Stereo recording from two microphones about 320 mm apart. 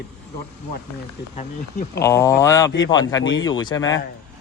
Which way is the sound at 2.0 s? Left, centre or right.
Centre.